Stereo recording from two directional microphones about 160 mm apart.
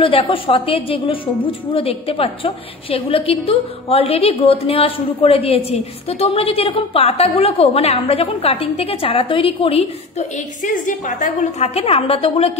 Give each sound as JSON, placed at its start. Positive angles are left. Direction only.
{"t": 0.0, "sound": "a woman's voice", "side_deg": 35}
{"t": 10.6, "sound": "a woman's voice", "side_deg": 55}
{"t": 11.3, "sound": "a woman's voice", "side_deg": 40}